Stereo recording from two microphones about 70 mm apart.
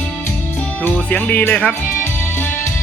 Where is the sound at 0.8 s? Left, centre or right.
Centre.